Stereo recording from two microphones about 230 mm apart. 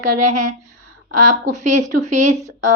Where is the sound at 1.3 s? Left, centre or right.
Right.